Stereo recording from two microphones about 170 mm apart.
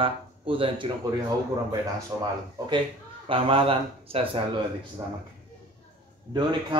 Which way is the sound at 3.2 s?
30° right (ahead or behind).